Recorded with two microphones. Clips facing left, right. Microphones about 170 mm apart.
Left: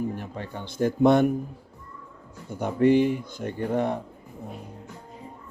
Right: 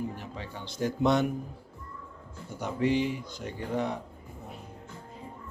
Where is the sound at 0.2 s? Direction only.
55° left (ahead or behind).